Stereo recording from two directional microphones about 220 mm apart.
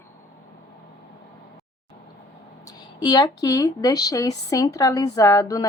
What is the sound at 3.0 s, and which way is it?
A woman's voice, 15° left (ahead or behind).